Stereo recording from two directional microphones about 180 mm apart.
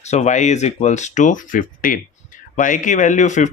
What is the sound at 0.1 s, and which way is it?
Speech, 40° left (ahead or behind).